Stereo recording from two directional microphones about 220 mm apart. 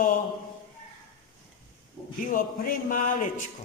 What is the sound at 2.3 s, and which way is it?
Speech, 40° left (ahead or behind).